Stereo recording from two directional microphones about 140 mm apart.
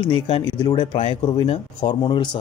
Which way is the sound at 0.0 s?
30° left (ahead or behind).